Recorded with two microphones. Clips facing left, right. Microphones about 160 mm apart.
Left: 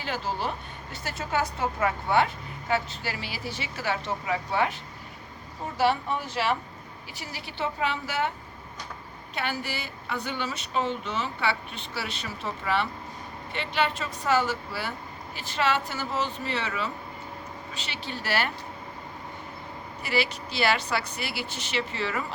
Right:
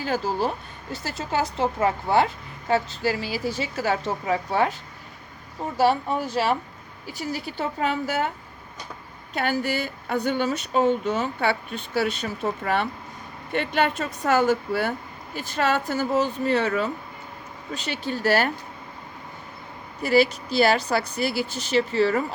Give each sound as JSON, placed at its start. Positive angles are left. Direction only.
{"t": 0.0, "sound": "a woman's voice", "side_deg": -40}
{"t": 5.7, "sound": "a woman's voice", "side_deg": -40}
{"t": 9.3, "sound": "speech", "side_deg": -45}
{"t": 20.0, "sound": "a woman's voice", "side_deg": -40}